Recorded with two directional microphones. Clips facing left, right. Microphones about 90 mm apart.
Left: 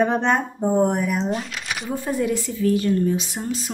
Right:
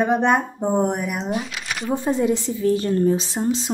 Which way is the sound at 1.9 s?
20° right (ahead or behind).